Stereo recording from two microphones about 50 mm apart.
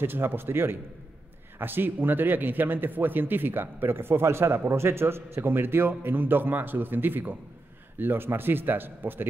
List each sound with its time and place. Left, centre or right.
0.0 s speech: right